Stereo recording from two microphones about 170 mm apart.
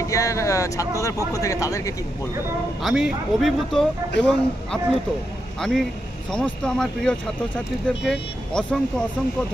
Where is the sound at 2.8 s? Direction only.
Centre (ahead or behind).